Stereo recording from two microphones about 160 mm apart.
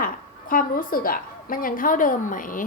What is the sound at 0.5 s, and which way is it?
Speech, 60° left (ahead or behind).